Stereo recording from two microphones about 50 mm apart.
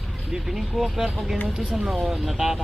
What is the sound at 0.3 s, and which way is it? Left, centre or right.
Speech, centre.